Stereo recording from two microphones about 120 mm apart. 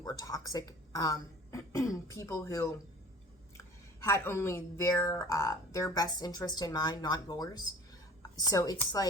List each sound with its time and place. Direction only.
0.0 s a woman's voice: 30° left (ahead or behind)
4.0 s a woman's voice: 20° left (ahead or behind)